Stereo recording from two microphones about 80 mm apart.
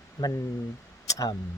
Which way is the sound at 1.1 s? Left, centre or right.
Left.